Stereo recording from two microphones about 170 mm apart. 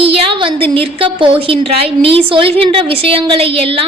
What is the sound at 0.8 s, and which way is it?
A woman's voice, 30° right (ahead or behind).